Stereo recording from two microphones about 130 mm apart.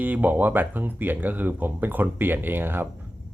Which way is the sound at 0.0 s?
15° right (ahead or behind).